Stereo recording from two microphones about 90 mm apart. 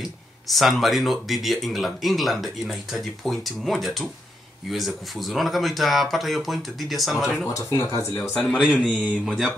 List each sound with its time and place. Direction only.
0.5 s speech: centre (ahead or behind)
7.5 s speech: 35° left (ahead or behind)
8.5 s speech: centre (ahead or behind)